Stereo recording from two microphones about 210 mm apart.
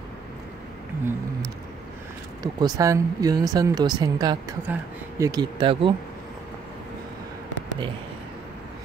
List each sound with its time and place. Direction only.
2.4 s speech: 15° right (ahead or behind)